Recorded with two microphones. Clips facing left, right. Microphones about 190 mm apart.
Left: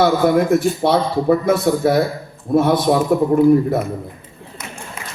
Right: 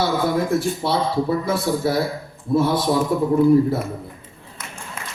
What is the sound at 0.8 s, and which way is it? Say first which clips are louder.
Speech: left 4 dB; 70° left (ahead or behind).